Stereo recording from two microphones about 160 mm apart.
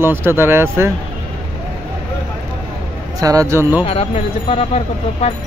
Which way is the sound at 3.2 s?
20° right (ahead or behind).